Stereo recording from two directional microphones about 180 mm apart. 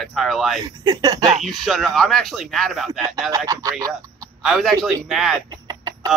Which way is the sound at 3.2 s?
20° right (ahead or behind).